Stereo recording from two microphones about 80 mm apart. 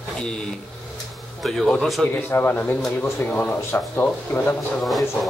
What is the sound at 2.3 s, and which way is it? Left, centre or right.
Speech, left.